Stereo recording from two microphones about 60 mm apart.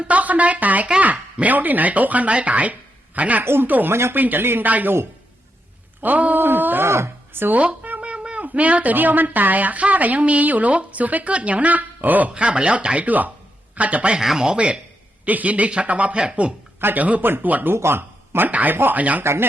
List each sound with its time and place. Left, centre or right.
0.0 s a woman's voice: right
3.4 s speech: right
3.7 s speech: right
6.0 s speech: right
6.8 s speech: right
7.6 s speech: right
12.3 s speech: centre
14.2 s speech: centre
16.8 s speech: right
17.7 s speech: right
19.2 s speech: right